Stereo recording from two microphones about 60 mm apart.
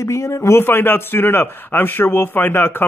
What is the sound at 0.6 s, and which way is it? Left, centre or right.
Speech, left.